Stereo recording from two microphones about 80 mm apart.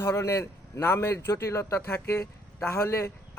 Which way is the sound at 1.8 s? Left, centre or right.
Left.